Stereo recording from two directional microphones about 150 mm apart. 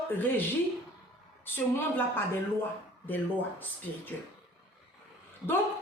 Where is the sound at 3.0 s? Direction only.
10° left (ahead or behind).